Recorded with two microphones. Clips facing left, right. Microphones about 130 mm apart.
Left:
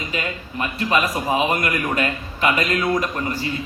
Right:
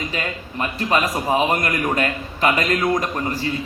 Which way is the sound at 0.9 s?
35° right (ahead or behind).